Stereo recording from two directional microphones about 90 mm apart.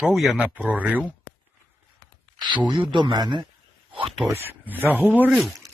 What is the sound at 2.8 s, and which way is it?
Speech, 60° right (ahead or behind).